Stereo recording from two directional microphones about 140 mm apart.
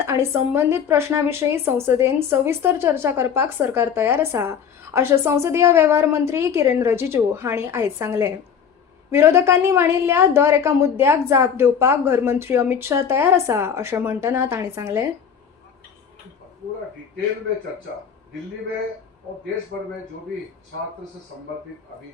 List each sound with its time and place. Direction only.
0.0 s a woman's voice: 15° right (ahead or behind)